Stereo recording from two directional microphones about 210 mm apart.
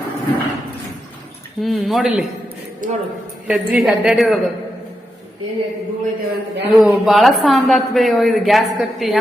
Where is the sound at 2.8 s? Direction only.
40° right (ahead or behind).